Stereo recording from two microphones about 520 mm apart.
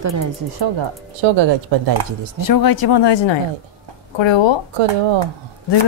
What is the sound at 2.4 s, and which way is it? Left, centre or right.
Speech, left.